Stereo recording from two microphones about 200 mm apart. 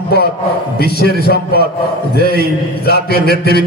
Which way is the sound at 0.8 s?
50° left (ahead or behind).